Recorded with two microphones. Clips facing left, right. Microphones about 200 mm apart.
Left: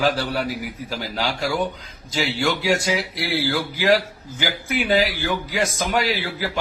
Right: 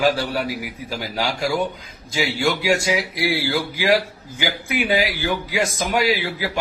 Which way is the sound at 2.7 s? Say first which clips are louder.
Right 1 dB; 10° right (ahead or behind).